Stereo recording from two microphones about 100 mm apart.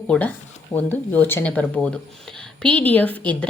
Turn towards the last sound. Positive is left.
turn(degrees=15)  # may be behind; listen again after turning